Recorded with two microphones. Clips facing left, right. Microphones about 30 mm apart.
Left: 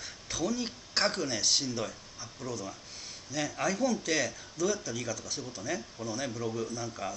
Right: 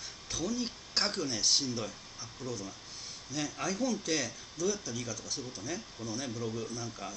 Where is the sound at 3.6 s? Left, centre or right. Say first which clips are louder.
Left 4 dB; centre.